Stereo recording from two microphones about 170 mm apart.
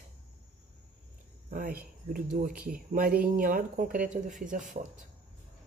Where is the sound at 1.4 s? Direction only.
55° right (ahead or behind).